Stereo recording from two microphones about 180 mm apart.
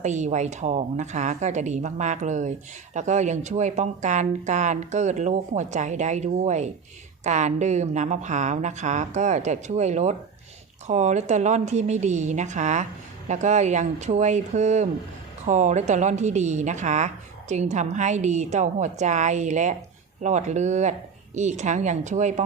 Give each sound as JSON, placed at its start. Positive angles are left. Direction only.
{"t": 0.0, "sound": "a woman's voice", "side_deg": -40}